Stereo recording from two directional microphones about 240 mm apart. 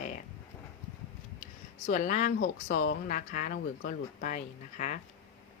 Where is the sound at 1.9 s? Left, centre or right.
Left.